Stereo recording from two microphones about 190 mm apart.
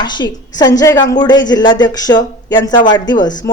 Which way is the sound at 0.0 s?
20° left (ahead or behind).